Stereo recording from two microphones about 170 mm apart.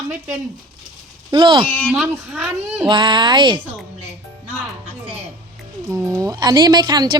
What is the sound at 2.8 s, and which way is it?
Speech, 25° right (ahead or behind).